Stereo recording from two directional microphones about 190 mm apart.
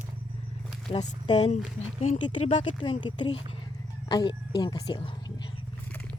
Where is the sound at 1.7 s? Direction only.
35° left (ahead or behind).